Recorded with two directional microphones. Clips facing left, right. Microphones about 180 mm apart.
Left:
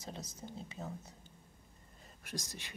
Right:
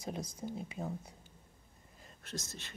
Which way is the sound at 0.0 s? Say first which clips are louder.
Right 6 dB; 10° right (ahead or behind).